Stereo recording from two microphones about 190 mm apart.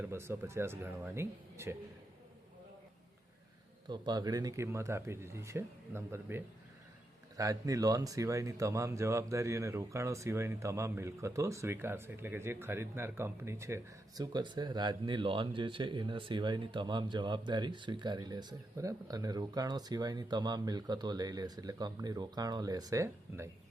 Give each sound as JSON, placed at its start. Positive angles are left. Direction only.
{"t": 0.0, "sound": "speech", "side_deg": -15}
{"t": 3.8, "sound": "speech", "side_deg": -25}